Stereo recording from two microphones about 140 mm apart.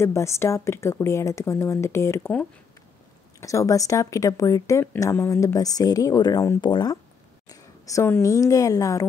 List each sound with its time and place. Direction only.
0.0 s speech: 20° left (ahead or behind)
3.3 s a woman's voice: 20° left (ahead or behind)